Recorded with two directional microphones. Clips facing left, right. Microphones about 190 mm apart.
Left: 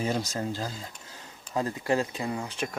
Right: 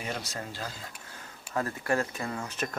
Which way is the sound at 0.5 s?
30° left (ahead or behind).